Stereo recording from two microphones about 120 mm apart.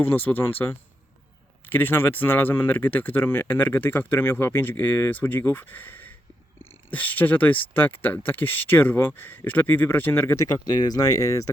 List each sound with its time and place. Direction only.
0.0 s speech: 15° left (ahead or behind)